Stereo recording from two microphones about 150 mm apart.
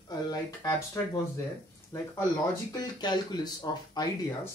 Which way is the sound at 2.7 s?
30° left (ahead or behind).